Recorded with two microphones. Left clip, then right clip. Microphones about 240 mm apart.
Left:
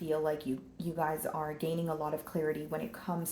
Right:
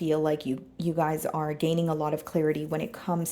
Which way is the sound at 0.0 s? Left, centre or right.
Right.